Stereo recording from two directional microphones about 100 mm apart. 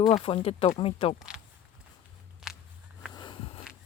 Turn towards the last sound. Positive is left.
turn(degrees=50)  # may be behind; listen again after turning